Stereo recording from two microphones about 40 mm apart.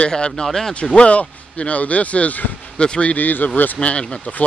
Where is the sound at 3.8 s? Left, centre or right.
Left.